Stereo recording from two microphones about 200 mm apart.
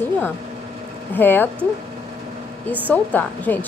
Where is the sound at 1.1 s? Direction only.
10° left (ahead or behind).